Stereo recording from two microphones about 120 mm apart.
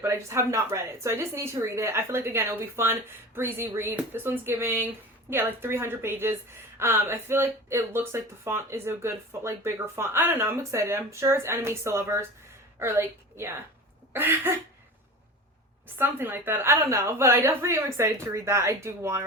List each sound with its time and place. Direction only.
0.0 s a woman's voice: 20° right (ahead or behind)
14.1 s a sound: 15° right (ahead or behind)
16.0 s speech: 20° right (ahead or behind)